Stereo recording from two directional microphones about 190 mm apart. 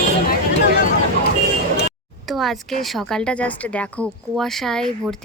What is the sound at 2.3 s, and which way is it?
A woman's voice, centre (ahead or behind).